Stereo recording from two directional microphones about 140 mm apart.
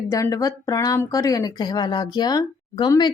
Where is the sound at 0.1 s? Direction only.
25° left (ahead or behind).